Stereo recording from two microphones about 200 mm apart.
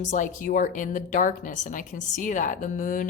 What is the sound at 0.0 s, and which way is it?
Speech, 40° left (ahead or behind).